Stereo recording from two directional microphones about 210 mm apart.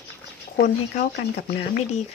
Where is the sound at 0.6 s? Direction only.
50° left (ahead or behind).